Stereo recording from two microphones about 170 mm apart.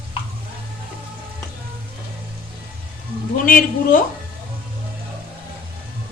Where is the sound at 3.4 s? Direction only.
55° left (ahead or behind).